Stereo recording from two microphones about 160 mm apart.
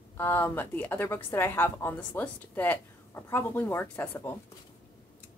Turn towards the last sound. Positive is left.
turn(degrees=15)  # may be behind; listen again after turning